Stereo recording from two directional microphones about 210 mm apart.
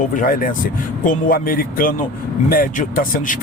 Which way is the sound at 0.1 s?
40° left (ahead or behind).